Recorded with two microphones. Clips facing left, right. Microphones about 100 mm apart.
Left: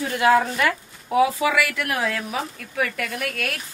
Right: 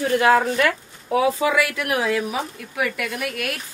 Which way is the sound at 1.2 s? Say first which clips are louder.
Even; 25° right (ahead or behind).